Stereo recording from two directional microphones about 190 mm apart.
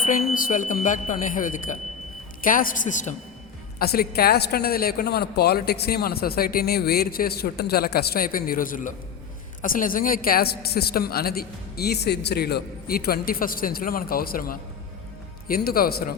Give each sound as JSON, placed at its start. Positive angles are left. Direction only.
{"t": 0.3, "sound": "a man's voice", "side_deg": 45}
{"t": 3.8, "sound": "a man's voice", "side_deg": 55}